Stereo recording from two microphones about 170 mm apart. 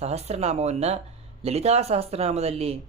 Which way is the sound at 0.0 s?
40° right (ahead or behind).